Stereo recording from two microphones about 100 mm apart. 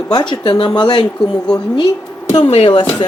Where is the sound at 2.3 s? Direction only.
75° left (ahead or behind); by 3.0 s 60° left (ahead or behind).